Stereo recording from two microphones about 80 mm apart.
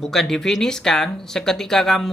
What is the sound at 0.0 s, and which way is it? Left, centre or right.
Speech, centre.